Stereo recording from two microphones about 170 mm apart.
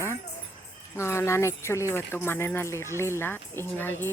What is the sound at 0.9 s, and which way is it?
A woman's voice, 15° left (ahead or behind).